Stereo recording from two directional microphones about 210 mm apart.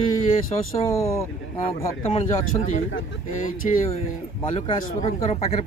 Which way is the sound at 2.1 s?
30° left (ahead or behind).